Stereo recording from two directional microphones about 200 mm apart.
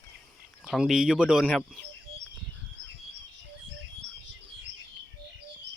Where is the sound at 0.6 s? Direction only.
Centre (ahead or behind).